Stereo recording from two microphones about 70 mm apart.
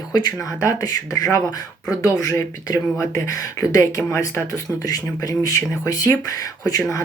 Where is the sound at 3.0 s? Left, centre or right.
Left.